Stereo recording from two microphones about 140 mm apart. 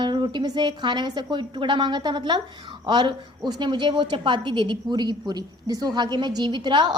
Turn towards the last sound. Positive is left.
turn(degrees=-35)  # may be behind; listen again after turning